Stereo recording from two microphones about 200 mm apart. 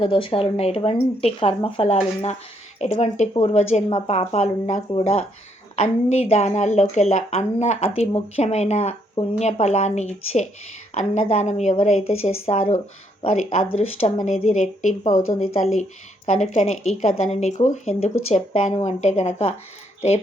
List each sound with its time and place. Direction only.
0.0 s a woman's voice: 25° left (ahead or behind)